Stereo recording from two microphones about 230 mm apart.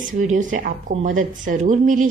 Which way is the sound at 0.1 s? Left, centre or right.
Right.